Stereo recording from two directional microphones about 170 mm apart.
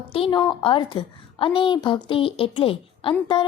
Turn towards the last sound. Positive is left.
turn(degrees=25)  # may be behind; listen again after turning